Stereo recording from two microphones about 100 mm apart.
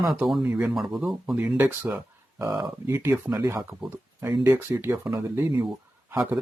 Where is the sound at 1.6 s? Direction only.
15° right (ahead or behind).